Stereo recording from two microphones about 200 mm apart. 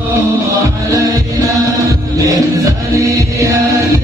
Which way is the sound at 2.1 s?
15° right (ahead or behind).